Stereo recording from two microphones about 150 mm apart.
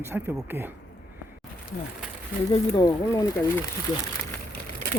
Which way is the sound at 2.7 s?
25° left (ahead or behind).